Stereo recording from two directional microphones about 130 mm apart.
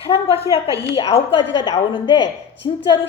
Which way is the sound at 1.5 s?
30° left (ahead or behind).